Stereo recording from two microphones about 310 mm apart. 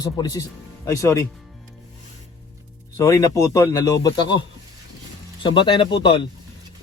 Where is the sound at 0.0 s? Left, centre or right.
Centre.